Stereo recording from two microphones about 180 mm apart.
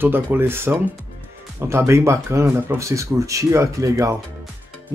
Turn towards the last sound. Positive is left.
turn(degrees=-15)  # may be behind; listen again after turning